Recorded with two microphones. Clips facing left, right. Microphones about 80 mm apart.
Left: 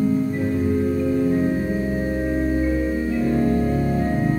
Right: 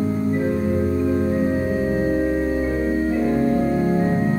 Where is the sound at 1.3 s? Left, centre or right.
Centre.